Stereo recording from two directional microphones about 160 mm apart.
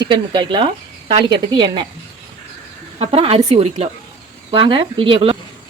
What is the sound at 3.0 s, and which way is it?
A woman's voice, 40° right (ahead or behind).